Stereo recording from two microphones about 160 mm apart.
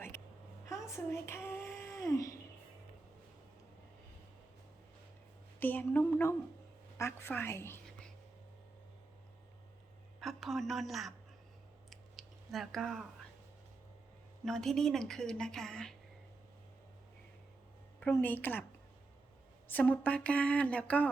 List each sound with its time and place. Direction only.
0.1 s a sound: 15° left (ahead or behind)
5.5 s a woman's voice: 10° left (ahead or behind)
10.2 s speech: centre (ahead or behind)
11.9 s clicking: centre (ahead or behind)
14.4 s a woman's voice: centre (ahead or behind)
18.0 s a woman's voice: 10° left (ahead or behind)
19.6 s a woman's voice: 10° left (ahead or behind)